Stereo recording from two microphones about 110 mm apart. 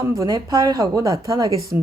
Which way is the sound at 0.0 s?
30° right (ahead or behind).